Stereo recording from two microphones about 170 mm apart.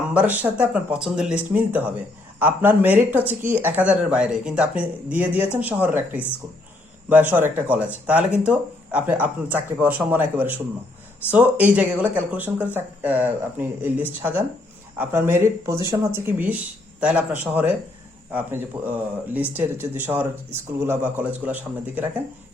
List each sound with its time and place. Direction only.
0.1 s speech: 10° right (ahead or behind)